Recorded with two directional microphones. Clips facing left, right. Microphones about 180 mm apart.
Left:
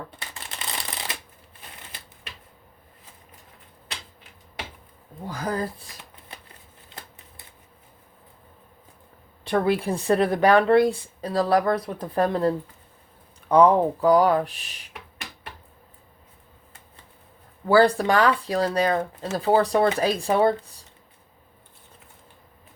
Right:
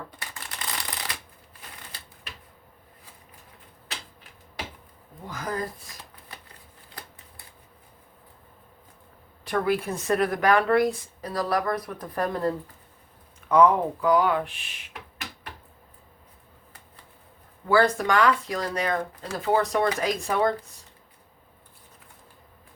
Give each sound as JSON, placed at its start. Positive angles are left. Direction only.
{"t": 0.2, "sound": "typewriter", "side_deg": 25}
{"t": 5.3, "sound": "shuffling cards", "side_deg": 30}
{"t": 9.4, "sound": "speech", "side_deg": 25}
{"t": 17.7, "sound": "speech", "side_deg": 30}